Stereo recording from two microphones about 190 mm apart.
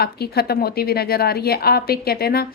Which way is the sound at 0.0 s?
55° left (ahead or behind).